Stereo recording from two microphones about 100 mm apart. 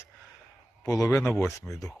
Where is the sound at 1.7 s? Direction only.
5° left (ahead or behind).